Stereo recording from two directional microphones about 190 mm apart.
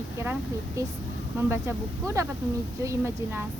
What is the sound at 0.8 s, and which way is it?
Speech, 15° right (ahead or behind).